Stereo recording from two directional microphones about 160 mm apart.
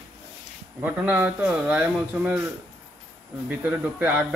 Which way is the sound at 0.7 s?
10° right (ahead or behind).